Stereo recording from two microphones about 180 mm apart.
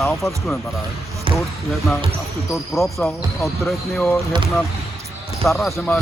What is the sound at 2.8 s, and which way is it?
Speech, centre (ahead or behind).